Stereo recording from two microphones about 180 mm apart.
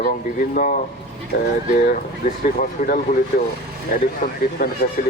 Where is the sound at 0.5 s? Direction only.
50° left (ahead or behind).